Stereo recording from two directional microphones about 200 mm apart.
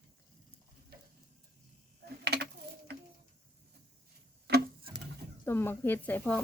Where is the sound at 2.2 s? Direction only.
55° right (ahead or behind).